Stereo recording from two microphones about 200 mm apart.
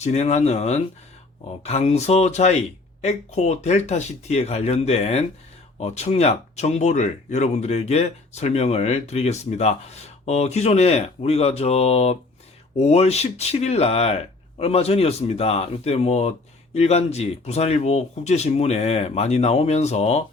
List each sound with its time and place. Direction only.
0.0 s speech: 35° left (ahead or behind)